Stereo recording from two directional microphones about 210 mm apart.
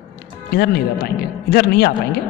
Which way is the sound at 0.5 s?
50° left (ahead or behind).